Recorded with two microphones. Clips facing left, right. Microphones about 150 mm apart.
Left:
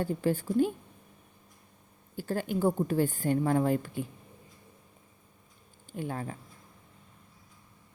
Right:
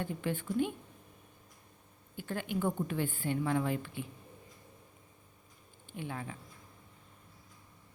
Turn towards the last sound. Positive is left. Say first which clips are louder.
# left 5 dB
turn(degrees=40)  # may be behind; listen again after turning